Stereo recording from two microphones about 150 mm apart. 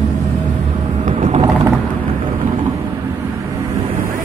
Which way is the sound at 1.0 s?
50° right (ahead or behind).